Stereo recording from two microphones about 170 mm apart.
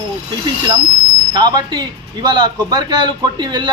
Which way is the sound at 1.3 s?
25° right (ahead or behind).